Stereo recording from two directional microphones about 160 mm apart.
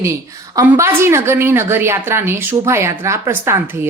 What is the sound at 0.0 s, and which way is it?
A woman's voice, 20° right (ahead or behind).